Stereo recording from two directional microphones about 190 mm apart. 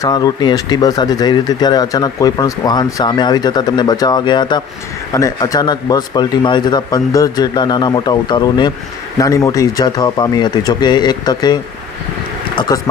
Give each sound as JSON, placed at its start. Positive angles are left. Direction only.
{"t": 0.0, "sound": "speech", "side_deg": 20}